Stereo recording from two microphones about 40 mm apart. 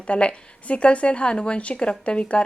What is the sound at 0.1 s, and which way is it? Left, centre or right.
A woman's voice, left.